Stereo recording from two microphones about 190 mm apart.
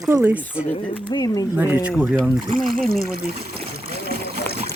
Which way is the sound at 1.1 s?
20° left (ahead or behind).